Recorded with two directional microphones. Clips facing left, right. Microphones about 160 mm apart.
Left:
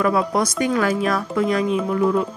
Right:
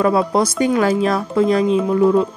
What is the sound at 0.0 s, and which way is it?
Speech, 30° right (ahead or behind).